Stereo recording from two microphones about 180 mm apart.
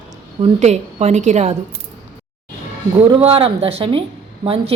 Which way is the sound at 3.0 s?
30° right (ahead or behind).